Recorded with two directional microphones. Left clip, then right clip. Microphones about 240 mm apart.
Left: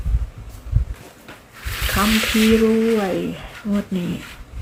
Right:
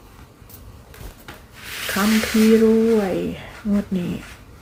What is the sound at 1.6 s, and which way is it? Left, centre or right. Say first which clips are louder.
Sizzle: left 2 dB; centre.